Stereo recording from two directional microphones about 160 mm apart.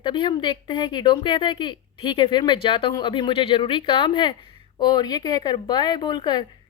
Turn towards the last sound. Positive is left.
turn(degrees=25)  # may be behind; listen again after turning